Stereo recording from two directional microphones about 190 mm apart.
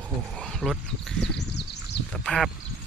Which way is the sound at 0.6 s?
5° right (ahead or behind).